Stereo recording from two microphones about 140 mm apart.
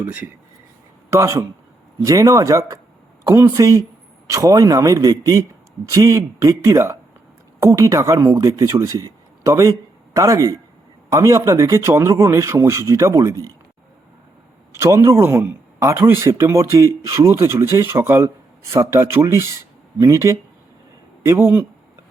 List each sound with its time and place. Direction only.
0.0 s speech: 10° right (ahead or behind)
14.7 s speech: 20° right (ahead or behind)